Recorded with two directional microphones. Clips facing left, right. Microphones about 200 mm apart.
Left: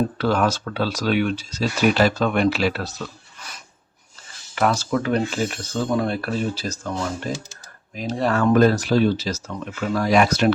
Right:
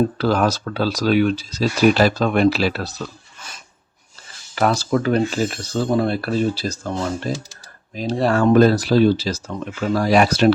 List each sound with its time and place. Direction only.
0.2 s speech: 35° right (ahead or behind)
4.5 s speech: 35° right (ahead or behind)
7.9 s speech: 30° right (ahead or behind)